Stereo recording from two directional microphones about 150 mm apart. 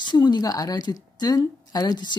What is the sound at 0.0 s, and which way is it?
A woman's voice, 30° left (ahead or behind).